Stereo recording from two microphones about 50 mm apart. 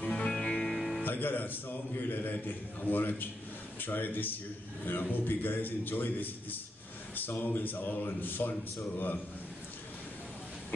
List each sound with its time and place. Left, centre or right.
0.0 s music: left
0.7 s music: centre
1.0 s a man's voice: left